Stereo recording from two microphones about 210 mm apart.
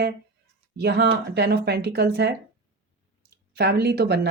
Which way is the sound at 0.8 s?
50° right (ahead or behind).